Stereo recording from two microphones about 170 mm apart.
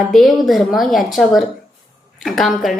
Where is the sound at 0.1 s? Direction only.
Centre (ahead or behind).